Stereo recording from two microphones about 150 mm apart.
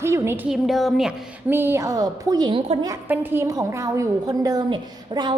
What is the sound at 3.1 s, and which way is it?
A woman's voice, 15° right (ahead or behind).